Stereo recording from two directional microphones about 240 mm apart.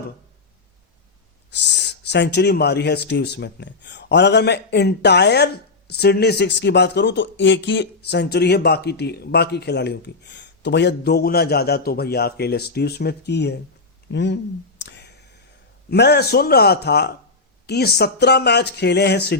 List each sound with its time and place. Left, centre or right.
1.5 s speech: left
14.8 s a sound: left
15.9 s speech: left